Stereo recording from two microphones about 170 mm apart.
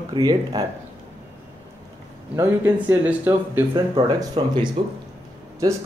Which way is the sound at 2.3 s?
10° right (ahead or behind).